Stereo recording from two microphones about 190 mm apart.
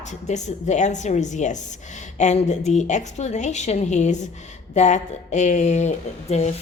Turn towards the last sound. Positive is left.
turn(degrees=35)  # may be behind; listen again after turning